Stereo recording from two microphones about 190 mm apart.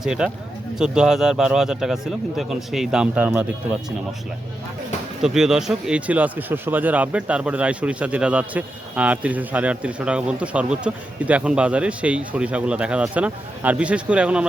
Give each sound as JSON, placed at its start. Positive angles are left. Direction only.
{"t": 0.0, "sound": "speech", "side_deg": -5}
{"t": 5.2, "sound": "speech", "side_deg": 0}